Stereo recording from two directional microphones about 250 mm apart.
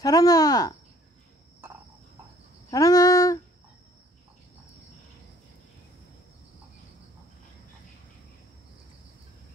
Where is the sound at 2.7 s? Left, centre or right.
Centre.